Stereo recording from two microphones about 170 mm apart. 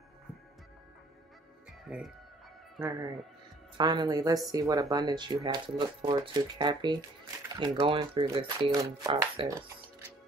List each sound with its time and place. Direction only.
1.9 s speech: 5° right (ahead or behind)
3.7 s speech: 25° right (ahead or behind)